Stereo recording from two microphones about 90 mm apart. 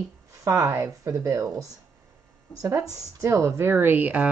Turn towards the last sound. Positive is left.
turn(degrees=-15)  # may be behind; listen again after turning